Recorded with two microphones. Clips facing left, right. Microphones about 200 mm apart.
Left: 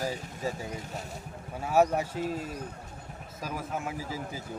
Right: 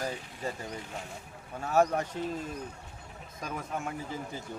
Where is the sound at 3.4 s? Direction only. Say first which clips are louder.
Left 1 dB; 5° left (ahead or behind).